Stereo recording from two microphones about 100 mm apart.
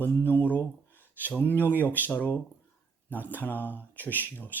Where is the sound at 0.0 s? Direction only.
20° left (ahead or behind).